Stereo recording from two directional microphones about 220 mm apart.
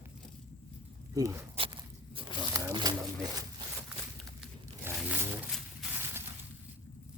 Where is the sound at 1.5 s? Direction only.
25° right (ahead or behind).